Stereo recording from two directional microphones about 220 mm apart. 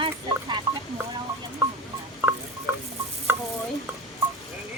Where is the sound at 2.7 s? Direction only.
10° right (ahead or behind).